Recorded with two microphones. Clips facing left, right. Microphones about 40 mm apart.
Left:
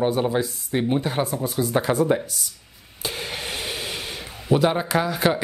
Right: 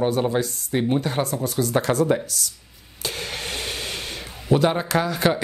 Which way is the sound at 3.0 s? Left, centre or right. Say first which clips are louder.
Even; centre.